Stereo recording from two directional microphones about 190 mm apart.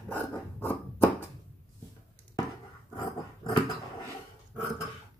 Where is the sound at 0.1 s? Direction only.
10° left (ahead or behind).